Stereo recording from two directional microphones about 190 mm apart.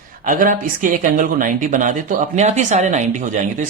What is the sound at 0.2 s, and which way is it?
Speech, 45° right (ahead or behind).